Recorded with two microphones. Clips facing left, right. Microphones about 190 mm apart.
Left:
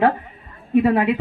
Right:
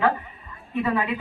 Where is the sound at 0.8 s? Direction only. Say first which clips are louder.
Left 4 dB; 65° left (ahead or behind).